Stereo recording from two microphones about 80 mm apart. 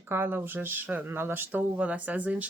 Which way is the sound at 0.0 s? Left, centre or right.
Right.